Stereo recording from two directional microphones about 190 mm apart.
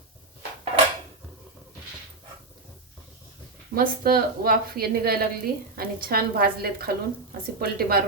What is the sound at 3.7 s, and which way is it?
A woman's voice, 50° right (ahead or behind).